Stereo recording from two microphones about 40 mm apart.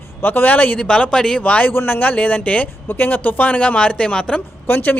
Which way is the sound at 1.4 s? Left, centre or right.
Left.